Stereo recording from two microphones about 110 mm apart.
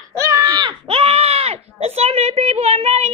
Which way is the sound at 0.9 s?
65° right (ahead or behind).